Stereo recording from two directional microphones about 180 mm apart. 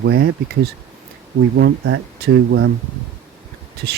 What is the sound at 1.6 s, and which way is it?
Speech, 80° right.